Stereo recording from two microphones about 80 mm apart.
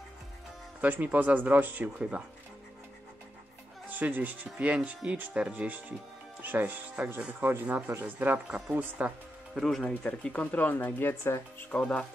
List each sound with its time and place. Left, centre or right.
0.7 s speech: right
4.0 s speech: right
9.6 s speech: centre; by 11.4 s left
11.7 s speech: centre